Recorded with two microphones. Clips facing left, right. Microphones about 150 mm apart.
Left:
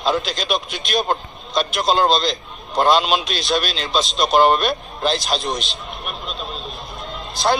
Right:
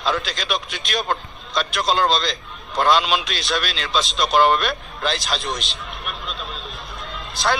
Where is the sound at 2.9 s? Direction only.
45° left (ahead or behind).